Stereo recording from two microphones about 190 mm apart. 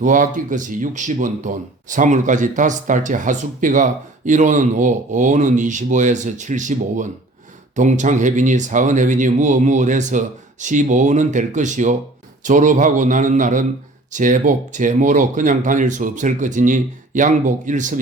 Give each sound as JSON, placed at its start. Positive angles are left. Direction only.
{"t": 0.0, "sound": "speech", "side_deg": -45}